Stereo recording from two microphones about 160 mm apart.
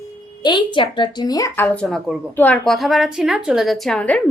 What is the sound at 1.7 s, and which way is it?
A woman's voice, 5° left (ahead or behind).